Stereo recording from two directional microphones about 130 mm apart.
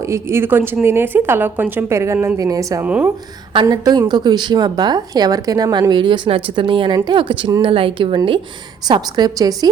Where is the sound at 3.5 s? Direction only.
35° right (ahead or behind).